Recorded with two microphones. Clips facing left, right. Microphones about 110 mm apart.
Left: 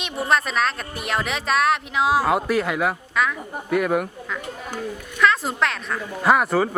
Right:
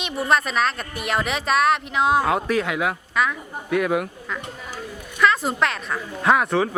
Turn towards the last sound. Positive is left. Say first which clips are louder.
# left 1 dB
turn(degrees=5)  # may be behind; listen again after turning